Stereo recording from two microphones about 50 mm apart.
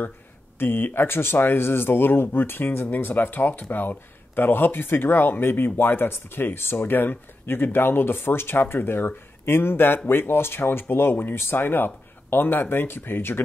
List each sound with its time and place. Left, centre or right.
0.6 s speech: left